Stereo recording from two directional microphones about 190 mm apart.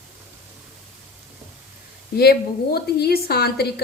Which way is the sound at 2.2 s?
55° left (ahead or behind).